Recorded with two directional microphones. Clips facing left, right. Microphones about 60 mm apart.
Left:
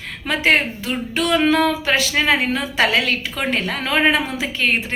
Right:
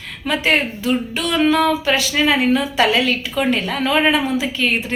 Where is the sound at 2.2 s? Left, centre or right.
Left.